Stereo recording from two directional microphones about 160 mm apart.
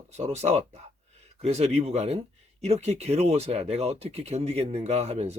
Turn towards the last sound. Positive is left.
turn(degrees=-40)  # may be behind; listen again after turning